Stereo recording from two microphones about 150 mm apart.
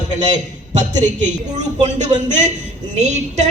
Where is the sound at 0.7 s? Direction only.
55° right (ahead or behind).